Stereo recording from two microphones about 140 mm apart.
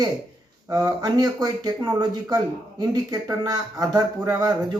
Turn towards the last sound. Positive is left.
turn(degrees=-25)  # may be behind; listen again after turning